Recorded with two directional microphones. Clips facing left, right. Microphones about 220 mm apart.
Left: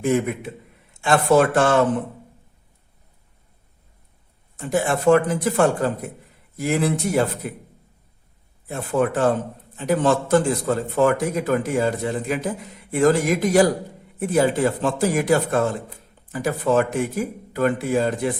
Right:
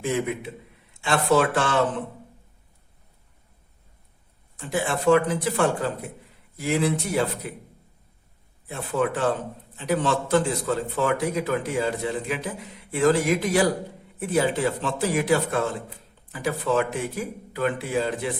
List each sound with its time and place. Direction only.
1.0 s a man's voice: 45° left (ahead or behind)
4.5 s a man's voice: 45° left (ahead or behind)
8.6 s a man's voice: 45° left (ahead or behind)